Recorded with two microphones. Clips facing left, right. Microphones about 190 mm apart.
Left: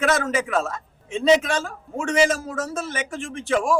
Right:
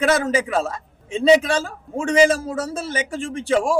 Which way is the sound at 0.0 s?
30° right (ahead or behind).